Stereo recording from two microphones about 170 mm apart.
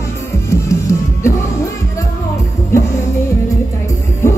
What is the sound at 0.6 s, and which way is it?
Music, 20° left (ahead or behind).